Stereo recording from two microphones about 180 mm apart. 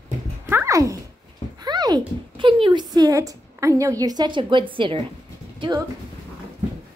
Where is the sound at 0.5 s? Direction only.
15° right (ahead or behind).